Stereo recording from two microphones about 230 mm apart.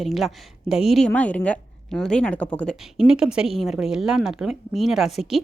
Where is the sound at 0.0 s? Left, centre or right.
Centre.